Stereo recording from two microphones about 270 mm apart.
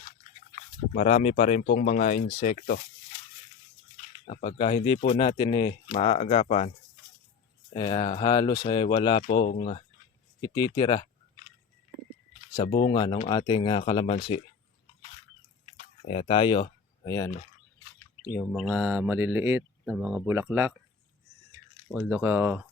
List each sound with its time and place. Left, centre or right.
0.9 s speech: left
4.3 s speech: left
7.7 s speech: centre
12.5 s speech: centre
15.6 s a sound: left
18.3 s speech: centre
21.9 s speech: centre